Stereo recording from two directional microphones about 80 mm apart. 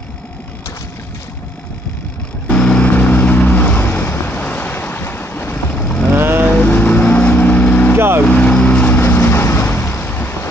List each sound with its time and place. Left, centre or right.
2.5 s vehicle: centre
6.1 s vehicle: right
6.5 s vehicle: left